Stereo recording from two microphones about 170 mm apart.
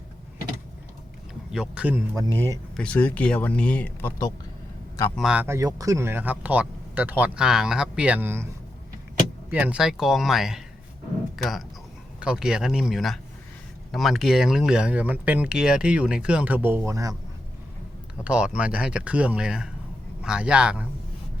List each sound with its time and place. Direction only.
1.5 s speech: 5° right (ahead or behind)
2.1 s speech: 20° right (ahead or behind)
2.7 s speech: 5° left (ahead or behind)
5.1 s speech: 5° right (ahead or behind)
9.5 s speech: 5° right (ahead or behind)
12.2 s speech: 5° right (ahead or behind)
18.2 s speech: 5° right (ahead or behind)